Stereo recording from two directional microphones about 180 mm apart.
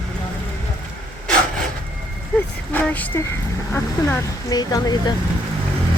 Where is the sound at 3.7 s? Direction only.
15° left (ahead or behind).